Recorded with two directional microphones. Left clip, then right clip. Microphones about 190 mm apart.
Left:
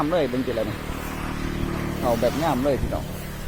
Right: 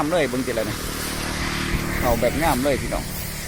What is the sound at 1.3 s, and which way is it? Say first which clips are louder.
Vehicle: right 5 dB; 30° right (ahead or behind).